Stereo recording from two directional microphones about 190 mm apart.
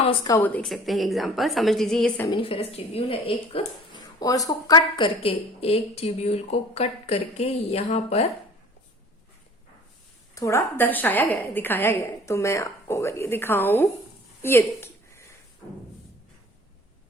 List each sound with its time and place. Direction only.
0.0 s a woman's voice: 30° left (ahead or behind)
0.3 s a woman's voice: 10° left (ahead or behind)
2.2 s speech: 25° left (ahead or behind)
4.2 s a woman's voice: 20° left (ahead or behind); by 8.3 s 35° left (ahead or behind)
10.3 s a woman's voice: 15° left (ahead or behind)
14.4 s a sound: 10° left (ahead or behind)